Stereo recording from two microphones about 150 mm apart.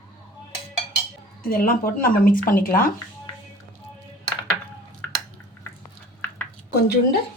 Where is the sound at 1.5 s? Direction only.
70° left (ahead or behind).